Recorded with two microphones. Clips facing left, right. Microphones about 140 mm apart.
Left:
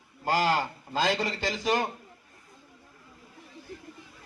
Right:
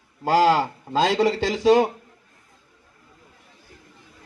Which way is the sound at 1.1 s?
85° right.